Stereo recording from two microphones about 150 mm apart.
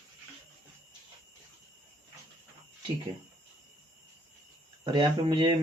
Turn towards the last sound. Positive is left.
turn(degrees=-30)  # may be behind; listen again after turning